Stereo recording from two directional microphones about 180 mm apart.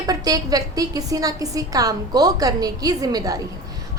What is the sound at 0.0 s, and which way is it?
A woman's voice, 20° right (ahead or behind).